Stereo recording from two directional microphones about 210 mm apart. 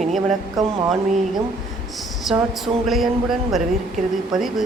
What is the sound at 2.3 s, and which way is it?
Speech, centre (ahead or behind).